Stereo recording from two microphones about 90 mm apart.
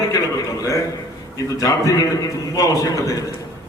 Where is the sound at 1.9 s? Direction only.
40° left (ahead or behind).